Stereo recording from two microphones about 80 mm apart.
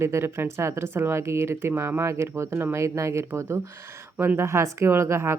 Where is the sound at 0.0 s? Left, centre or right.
Right.